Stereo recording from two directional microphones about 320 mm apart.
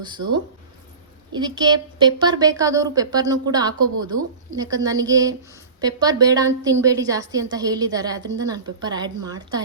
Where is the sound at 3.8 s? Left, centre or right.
Right.